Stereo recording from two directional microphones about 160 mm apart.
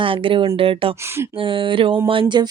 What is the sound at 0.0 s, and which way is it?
Speech, 35° right (ahead or behind).